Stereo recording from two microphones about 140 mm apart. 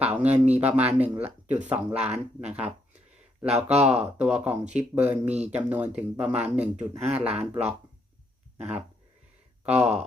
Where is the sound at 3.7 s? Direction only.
50° right (ahead or behind).